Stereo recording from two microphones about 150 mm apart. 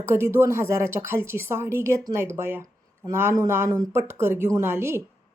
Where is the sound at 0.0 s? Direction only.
15° right (ahead or behind).